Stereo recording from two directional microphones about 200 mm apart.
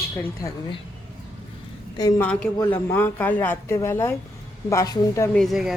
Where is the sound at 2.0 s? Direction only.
20° left (ahead or behind).